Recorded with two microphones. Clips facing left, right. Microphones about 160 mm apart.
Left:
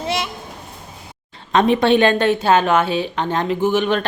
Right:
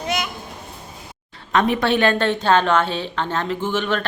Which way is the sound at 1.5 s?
20° left (ahead or behind).